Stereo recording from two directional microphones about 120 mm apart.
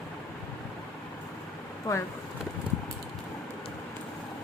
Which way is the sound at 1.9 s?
25° left (ahead or behind).